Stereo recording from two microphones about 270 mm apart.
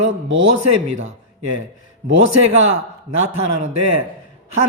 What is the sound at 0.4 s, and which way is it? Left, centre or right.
Speech, right.